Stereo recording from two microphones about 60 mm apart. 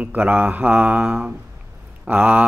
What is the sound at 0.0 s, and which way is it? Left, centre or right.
Speech, right.